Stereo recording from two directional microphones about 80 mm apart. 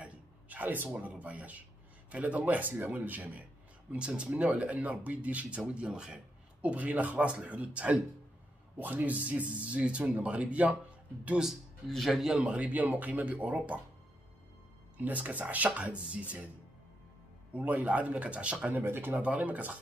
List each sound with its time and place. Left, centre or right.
0.0 s a sound: centre
0.8 s speech: centre
11.9 s a man's voice: centre
12.4 s speech: centre
15.0 s speech: centre
17.5 s speech: centre